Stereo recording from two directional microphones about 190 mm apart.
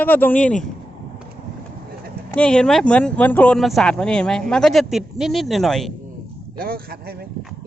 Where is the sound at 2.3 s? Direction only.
5° left (ahead or behind).